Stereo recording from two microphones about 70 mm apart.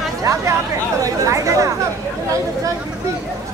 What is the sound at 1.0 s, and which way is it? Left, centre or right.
Chatter, right.